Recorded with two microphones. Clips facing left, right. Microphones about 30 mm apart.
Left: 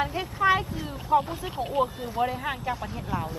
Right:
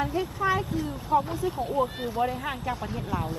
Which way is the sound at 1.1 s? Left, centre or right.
Centre.